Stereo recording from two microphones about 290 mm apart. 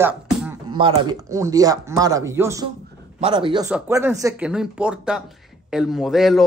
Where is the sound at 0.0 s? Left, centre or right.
Centre.